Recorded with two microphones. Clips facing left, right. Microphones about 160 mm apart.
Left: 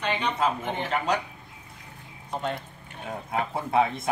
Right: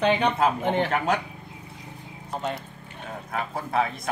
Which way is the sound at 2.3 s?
5° right (ahead or behind).